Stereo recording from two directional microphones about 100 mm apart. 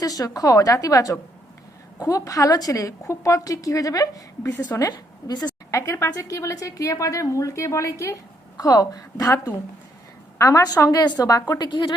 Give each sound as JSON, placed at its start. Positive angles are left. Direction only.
{"t": 0.0, "sound": "a woman's voice", "side_deg": 40}
{"t": 10.3, "sound": "a woman's voice", "side_deg": 30}